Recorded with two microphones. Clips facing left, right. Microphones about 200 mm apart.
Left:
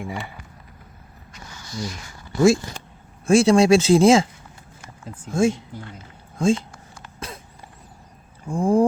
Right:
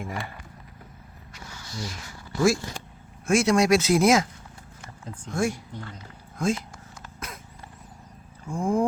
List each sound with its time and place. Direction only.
2.3 s speech: 25° left (ahead or behind)
5.3 s speech: 25° left (ahead or behind)
8.4 s a sound: 30° left (ahead or behind)